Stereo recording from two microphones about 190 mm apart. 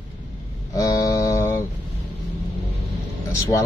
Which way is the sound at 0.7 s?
15° left (ahead or behind).